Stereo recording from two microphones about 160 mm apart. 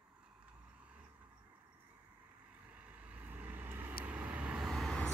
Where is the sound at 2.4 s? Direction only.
10° right (ahead or behind).